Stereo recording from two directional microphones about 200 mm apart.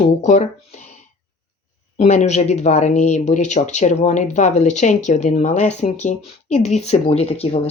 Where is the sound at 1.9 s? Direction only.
35° left (ahead or behind).